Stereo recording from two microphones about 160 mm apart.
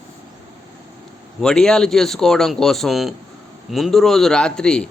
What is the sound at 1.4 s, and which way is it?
A man's voice, 5° left (ahead or behind).